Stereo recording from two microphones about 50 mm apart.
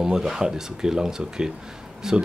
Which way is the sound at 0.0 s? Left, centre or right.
Centre.